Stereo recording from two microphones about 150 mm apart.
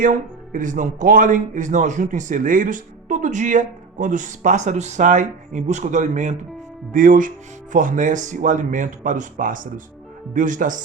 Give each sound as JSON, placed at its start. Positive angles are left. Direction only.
{"t": 0.0, "sound": "speech", "side_deg": -60}